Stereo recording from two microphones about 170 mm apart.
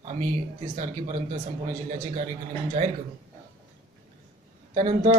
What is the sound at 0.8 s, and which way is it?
Speech, 40° right (ahead or behind).